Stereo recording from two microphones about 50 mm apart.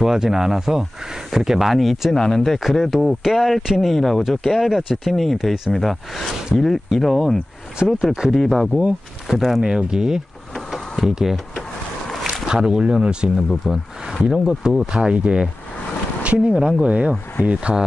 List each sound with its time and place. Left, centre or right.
0.0 s speech: centre
2.1 s speech: centre
2.6 s speech: centre
8.3 s speech: centre
10.7 s a sound: centre
12.3 s speech: centre
14.9 s speech: centre